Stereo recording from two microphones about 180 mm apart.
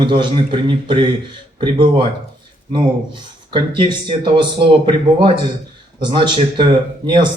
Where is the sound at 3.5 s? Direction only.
25° right (ahead or behind).